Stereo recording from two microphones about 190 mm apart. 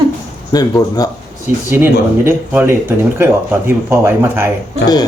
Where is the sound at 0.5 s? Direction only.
20° left (ahead or behind).